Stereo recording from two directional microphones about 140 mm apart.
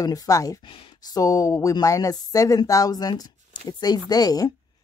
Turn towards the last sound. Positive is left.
turn(degrees=25)  # may be behind; listen again after turning